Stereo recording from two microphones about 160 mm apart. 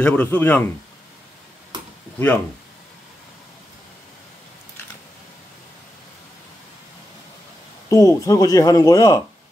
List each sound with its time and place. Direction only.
0.0 s speech: 10° left (ahead or behind)
2.1 s speech: 10° left (ahead or behind)
7.9 s speech: 20° left (ahead or behind)